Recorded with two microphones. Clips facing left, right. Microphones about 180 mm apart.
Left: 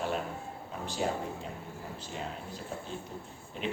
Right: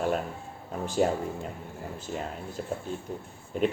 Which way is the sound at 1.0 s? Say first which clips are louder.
Right 5 dB; 50° right (ahead or behind).